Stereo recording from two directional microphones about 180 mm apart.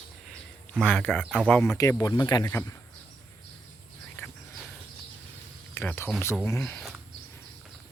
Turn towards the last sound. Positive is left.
turn(degrees=15)  # may be behind; listen again after turning